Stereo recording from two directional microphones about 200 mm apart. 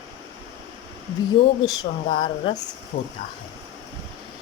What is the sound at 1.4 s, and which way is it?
A woman's voice, 20° left (ahead or behind).